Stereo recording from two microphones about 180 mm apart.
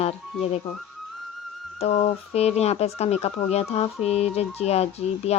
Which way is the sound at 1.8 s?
35° left (ahead or behind).